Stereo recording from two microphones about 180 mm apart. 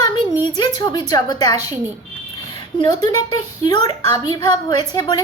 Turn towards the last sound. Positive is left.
turn(degrees=20)  # may be behind; listen again after turning